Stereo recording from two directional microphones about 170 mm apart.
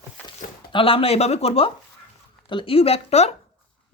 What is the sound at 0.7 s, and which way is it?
A woman's voice, 30° left (ahead or behind).